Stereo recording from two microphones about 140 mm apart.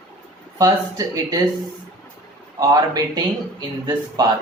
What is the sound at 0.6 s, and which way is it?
Speech, 25° right (ahead or behind).